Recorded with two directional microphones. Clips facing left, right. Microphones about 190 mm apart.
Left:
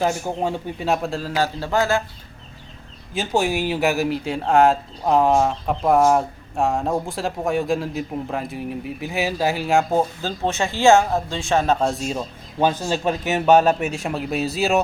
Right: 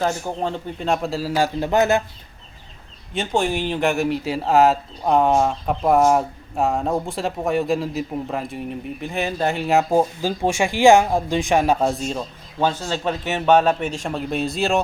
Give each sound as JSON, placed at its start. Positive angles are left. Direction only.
{"t": 0.0, "sound": "speech", "side_deg": 10}
{"t": 1.4, "sound": "speech", "side_deg": -20}
{"t": 3.1, "sound": "speech", "side_deg": 5}
{"t": 12.5, "sound": "speech", "side_deg": 15}